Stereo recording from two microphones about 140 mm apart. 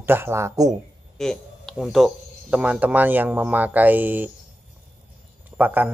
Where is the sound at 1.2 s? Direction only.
5° left (ahead or behind); by 4.2 s 10° right (ahead or behind).